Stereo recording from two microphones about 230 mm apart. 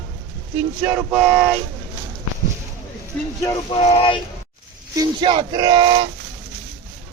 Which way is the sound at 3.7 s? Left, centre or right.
Left.